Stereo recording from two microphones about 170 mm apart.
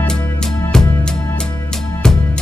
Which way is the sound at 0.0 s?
5° left (ahead or behind).